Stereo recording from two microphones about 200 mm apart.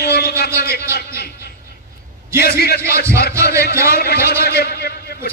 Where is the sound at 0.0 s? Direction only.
55° left (ahead or behind).